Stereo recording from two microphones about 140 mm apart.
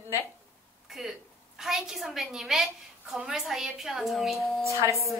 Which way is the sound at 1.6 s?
5° right (ahead or behind).